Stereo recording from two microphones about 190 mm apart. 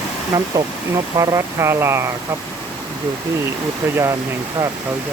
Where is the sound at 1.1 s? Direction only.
20° right (ahead or behind).